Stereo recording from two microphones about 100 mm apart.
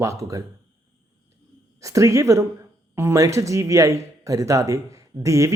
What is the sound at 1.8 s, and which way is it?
Speech, 30° right (ahead or behind).